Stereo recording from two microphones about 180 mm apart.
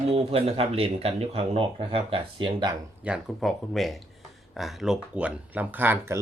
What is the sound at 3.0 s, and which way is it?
Speech, 5° right (ahead or behind).